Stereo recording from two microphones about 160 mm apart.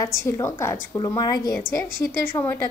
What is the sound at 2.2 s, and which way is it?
Speech, 10° left (ahead or behind).